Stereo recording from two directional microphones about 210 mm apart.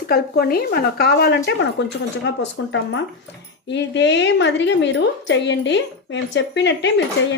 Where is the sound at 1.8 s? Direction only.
60° left (ahead or behind).